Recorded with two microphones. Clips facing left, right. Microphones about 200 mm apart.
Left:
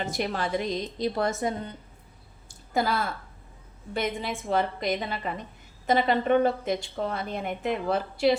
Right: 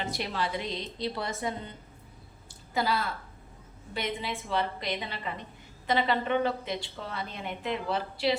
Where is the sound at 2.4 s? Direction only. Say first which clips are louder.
Left 3 dB; 50° left (ahead or behind).